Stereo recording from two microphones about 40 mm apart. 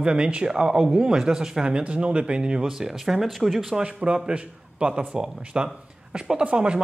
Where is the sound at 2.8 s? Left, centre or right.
Centre.